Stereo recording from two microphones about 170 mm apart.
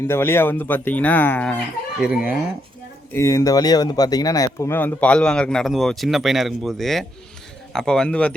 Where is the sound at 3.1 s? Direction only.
15° left (ahead or behind).